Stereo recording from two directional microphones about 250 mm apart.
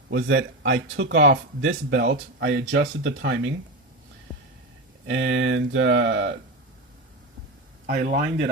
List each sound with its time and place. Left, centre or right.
0.1 s speech: right
5.0 s speech: right
7.9 s speech: right